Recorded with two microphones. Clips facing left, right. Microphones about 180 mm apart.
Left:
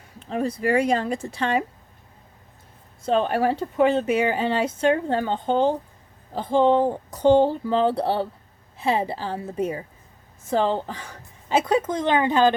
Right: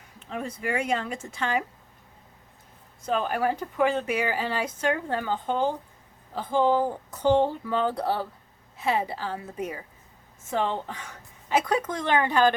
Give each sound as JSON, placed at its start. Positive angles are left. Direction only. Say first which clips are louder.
{"t": 0.3, "sound": "speech", "louder": "left 8 dB", "side_deg": 35}
{"t": 3.1, "sound": "a woman's voice", "louder": "left 5 dB", "side_deg": 30}